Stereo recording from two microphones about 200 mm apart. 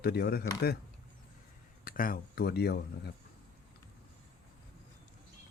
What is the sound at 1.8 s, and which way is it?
Speech, 45° left (ahead or behind).